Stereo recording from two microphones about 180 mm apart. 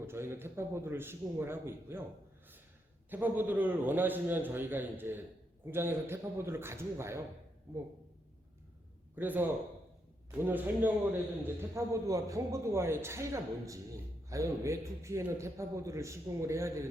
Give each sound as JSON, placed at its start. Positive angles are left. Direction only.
{"t": 0.0, "sound": "a man's voice", "side_deg": -15}
{"t": 3.1, "sound": "a man's voice", "side_deg": -10}
{"t": 9.1, "sound": "a man's voice", "side_deg": -10}